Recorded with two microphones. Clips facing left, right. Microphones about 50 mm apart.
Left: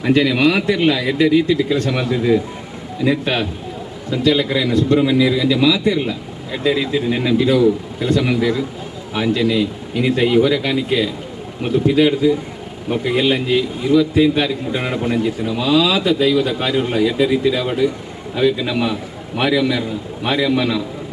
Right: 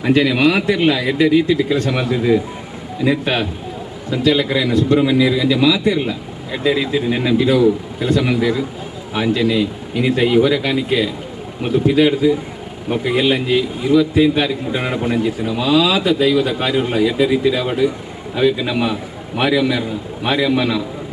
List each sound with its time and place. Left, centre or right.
0.0 s a man's voice: centre